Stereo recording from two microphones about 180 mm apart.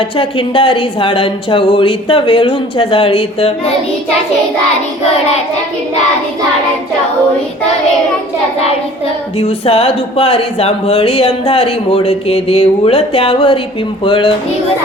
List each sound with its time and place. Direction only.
0.2 s speech: 30° left (ahead or behind)
9.4 s speech: 30° left (ahead or behind)